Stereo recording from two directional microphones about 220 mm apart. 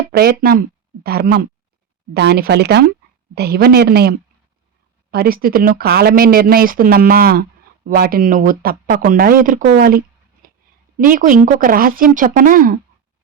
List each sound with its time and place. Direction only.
0.1 s speech: 45° right (ahead or behind)
5.1 s speech: 45° right (ahead or behind)
11.1 s speech: 35° right (ahead or behind)